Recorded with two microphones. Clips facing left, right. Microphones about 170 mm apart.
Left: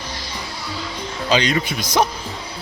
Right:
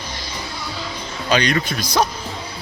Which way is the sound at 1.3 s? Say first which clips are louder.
Even; 20° left (ahead or behind).